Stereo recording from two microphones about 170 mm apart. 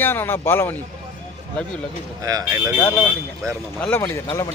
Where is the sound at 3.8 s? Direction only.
10° left (ahead or behind).